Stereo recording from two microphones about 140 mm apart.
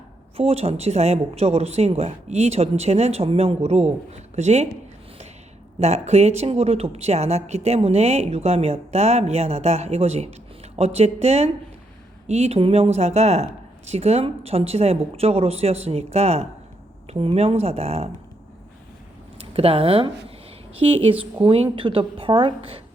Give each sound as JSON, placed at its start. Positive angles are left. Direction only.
{"t": 0.3, "sound": "speech", "side_deg": -45}
{"t": 5.8, "sound": "speech", "side_deg": -50}
{"t": 19.4, "sound": "a woman's voice", "side_deg": -45}